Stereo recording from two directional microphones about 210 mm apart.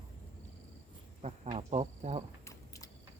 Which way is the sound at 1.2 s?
30° right (ahead or behind).